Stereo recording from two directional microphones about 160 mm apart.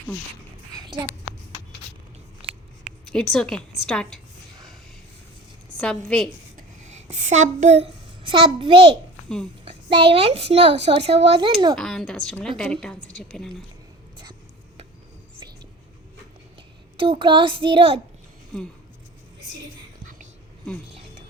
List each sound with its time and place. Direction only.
2.4 s a sound: 35° right (ahead or behind)
3.1 s a woman's voice: 5° left (ahead or behind)
5.8 s a woman's voice: 5° left (ahead or behind)
6.6 s a sound: 45° right (ahead or behind)
8.3 s a child's voice: 30° right (ahead or behind)
11.7 s a woman's voice: centre (ahead or behind)
17.0 s a child's voice: 30° right (ahead or behind)